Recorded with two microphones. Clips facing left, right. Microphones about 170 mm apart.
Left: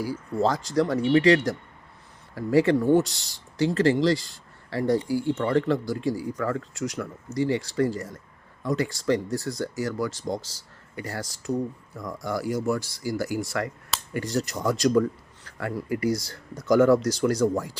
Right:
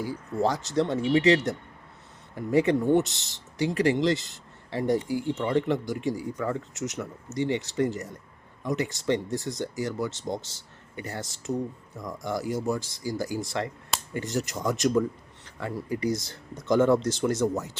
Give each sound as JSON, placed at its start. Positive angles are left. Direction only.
{"t": 0.4, "sound": "speech", "side_deg": -20}